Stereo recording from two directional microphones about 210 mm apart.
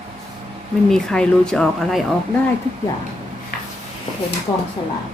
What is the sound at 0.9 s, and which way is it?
A woman's voice, 5° left (ahead or behind).